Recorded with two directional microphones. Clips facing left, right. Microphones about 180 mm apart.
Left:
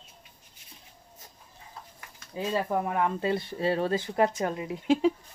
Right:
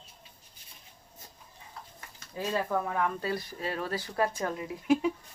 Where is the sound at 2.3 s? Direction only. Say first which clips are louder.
Left 2 dB; 20° left (ahead or behind).